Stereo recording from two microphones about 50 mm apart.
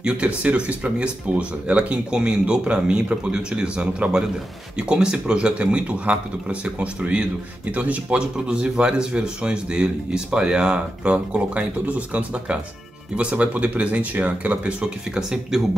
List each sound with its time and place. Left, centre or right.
0.0 s speech: right